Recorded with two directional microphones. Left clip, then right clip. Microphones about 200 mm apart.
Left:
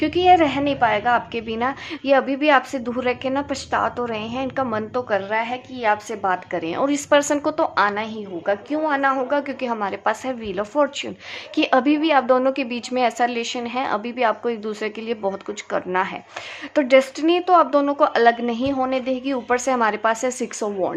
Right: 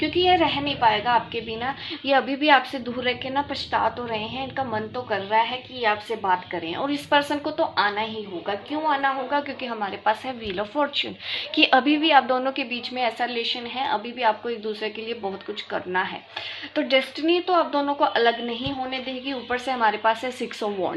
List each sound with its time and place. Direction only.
0.0 s a woman's voice: 50° left (ahead or behind)
2.0 s a woman's voice: 30° left (ahead or behind)